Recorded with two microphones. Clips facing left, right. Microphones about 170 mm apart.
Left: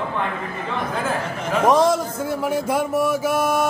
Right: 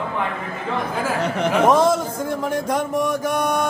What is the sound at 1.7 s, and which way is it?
A man's voice, centre (ahead or behind).